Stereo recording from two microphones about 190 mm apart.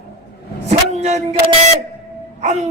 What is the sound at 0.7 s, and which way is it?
Vehicle, 35° right (ahead or behind).